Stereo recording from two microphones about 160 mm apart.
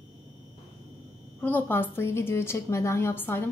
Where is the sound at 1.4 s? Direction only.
10° left (ahead or behind).